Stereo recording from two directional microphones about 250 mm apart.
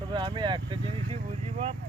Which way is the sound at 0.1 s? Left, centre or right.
Centre.